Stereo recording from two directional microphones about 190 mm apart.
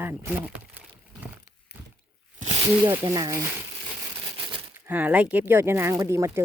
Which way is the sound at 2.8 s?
15° right (ahead or behind).